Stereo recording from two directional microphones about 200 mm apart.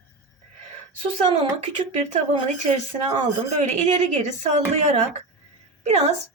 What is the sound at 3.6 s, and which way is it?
Speech, 35° right (ahead or behind).